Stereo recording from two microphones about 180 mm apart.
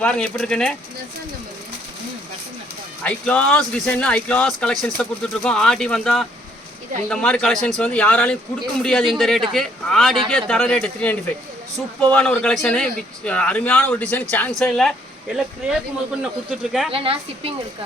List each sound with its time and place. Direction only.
0.0 s speech: 5° left (ahead or behind)
3.0 s speech: 10° left (ahead or behind)
16.9 s a woman's voice: 30° right (ahead or behind)